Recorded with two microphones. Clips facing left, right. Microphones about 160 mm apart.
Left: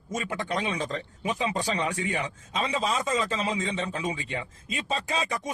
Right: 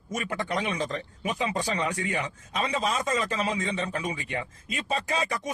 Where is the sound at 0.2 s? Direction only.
15° left (ahead or behind).